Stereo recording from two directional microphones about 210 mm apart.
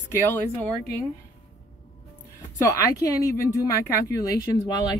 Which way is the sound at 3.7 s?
15° left (ahead or behind).